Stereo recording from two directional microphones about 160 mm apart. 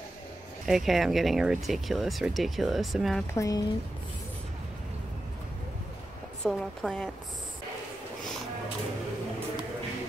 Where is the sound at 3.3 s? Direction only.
20° left (ahead or behind).